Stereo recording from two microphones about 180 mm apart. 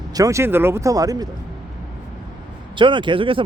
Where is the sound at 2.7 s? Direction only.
25° right (ahead or behind).